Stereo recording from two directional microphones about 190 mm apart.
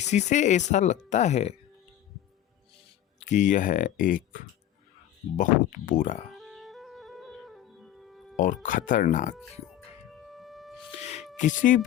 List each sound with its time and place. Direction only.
0.0 s speech: 35° left (ahead or behind)
3.2 s speech: 40° left (ahead or behind)
6.3 s music: centre (ahead or behind)
8.6 s speech: 45° left (ahead or behind)
10.1 s music: centre (ahead or behind)
10.8 s music: 35° left (ahead or behind)
11.3 s speech: 40° left (ahead or behind)